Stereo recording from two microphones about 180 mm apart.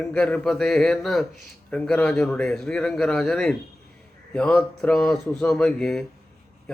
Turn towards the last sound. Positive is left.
turn(degrees=5)  # may be behind; listen again after turning